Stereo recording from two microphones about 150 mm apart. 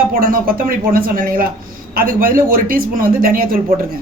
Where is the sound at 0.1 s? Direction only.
70° right (ahead or behind).